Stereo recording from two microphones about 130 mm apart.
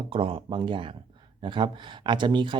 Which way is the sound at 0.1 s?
40° right (ahead or behind).